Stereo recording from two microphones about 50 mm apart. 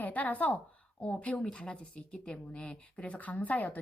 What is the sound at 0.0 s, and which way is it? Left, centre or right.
A woman's voice, left.